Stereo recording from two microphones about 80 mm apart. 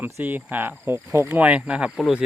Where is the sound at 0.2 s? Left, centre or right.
Right.